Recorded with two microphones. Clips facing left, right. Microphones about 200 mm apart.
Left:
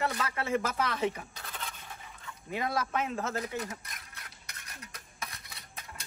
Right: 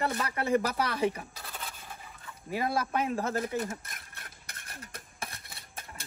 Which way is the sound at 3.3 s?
50° right (ahead or behind).